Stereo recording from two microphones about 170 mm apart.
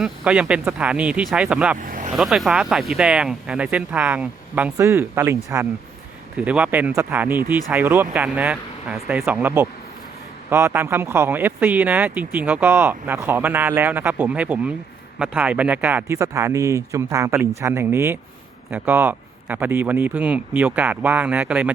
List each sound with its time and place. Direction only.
0.0 s speech: 5° right (ahead or behind)
1.9 s vehicle: 50° right (ahead or behind)
2.1 s speech: centre (ahead or behind)